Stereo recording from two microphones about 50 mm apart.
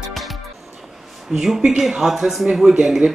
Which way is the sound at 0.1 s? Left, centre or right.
Centre.